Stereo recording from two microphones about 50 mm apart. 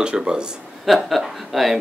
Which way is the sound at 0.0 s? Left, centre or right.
Centre.